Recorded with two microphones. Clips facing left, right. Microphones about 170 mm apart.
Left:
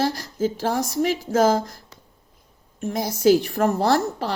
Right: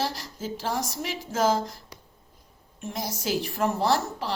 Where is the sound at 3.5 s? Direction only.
50° left (ahead or behind).